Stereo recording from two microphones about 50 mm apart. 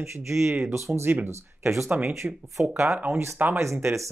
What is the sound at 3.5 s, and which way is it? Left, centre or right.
Speech, right.